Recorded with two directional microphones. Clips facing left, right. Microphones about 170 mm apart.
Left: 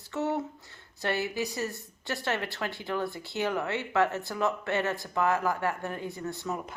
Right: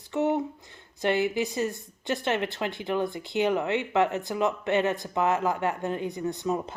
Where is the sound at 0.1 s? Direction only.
15° right (ahead or behind).